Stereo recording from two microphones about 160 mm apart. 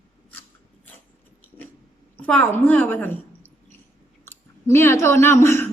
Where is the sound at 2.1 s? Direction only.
10° left (ahead or behind).